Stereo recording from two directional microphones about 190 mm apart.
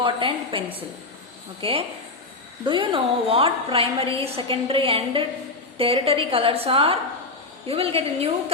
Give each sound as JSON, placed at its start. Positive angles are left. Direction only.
{"t": 0.0, "sound": "a woman's voice", "side_deg": -25}